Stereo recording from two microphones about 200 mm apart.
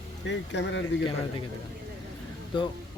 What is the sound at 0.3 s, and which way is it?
Speech, 60° left (ahead or behind).